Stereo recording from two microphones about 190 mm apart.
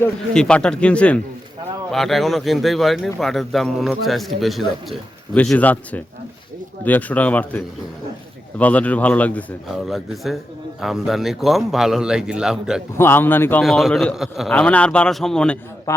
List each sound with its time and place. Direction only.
0.0 s a man's voice: 5° left (ahead or behind)
12.9 s a man's voice: 10° left (ahead or behind)
15.9 s a man's voice: 15° left (ahead or behind)